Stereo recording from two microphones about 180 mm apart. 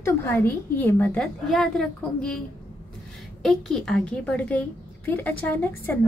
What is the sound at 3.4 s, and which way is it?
A woman's voice, centre (ahead or behind).